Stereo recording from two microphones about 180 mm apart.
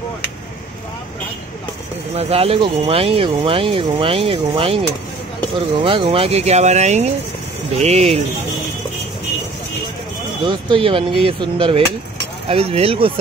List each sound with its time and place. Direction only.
2.1 s speech: 35° right (ahead or behind)
5.9 s speech: 30° right (ahead or behind)
10.4 s speech: 25° right (ahead or behind)